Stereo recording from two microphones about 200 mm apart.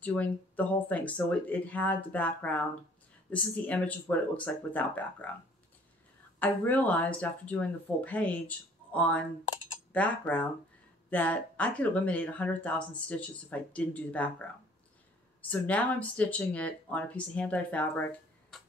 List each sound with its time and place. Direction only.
0.0 s speech: 10° left (ahead or behind)
6.4 s speech: 10° left (ahead or behind)
15.5 s speech: 5° left (ahead or behind)